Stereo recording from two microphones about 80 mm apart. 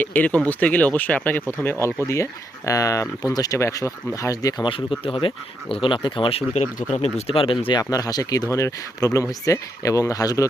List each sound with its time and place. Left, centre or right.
0.0 s speech: left
2.0 s speech: left
4.5 s speech: left
7.3 s speech: left
7.8 s speech: left